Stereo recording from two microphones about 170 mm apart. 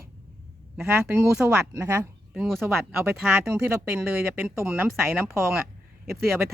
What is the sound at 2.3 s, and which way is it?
Speech, 5° right (ahead or behind).